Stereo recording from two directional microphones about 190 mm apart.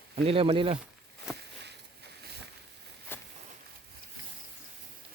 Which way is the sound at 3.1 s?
10° left (ahead or behind).